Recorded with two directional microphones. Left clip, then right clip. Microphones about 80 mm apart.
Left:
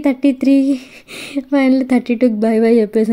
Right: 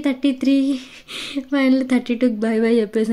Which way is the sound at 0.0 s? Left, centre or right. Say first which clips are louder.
Left 5 dB; left.